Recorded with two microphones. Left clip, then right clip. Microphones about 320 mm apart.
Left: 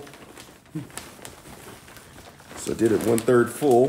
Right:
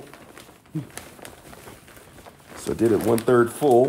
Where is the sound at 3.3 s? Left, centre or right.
Centre.